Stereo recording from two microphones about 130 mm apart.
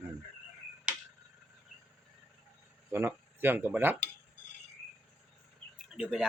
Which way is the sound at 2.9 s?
15° right (ahead or behind).